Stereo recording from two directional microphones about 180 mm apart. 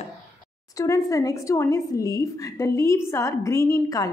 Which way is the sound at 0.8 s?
20° left (ahead or behind).